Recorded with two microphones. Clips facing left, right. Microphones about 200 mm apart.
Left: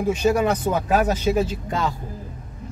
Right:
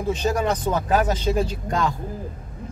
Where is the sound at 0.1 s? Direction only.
10° left (ahead or behind).